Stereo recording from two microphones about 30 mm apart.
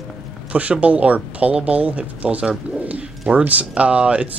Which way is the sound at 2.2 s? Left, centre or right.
Right.